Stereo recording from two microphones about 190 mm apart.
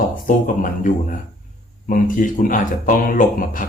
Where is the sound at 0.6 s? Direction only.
45° left (ahead or behind).